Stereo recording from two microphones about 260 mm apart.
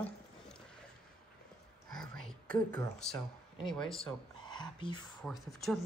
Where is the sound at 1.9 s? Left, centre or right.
Centre.